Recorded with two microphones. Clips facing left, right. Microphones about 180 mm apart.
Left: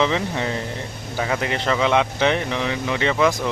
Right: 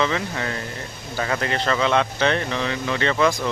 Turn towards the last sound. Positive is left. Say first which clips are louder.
# left 1 dB
turn(degrees=10)  # may be behind; listen again after turning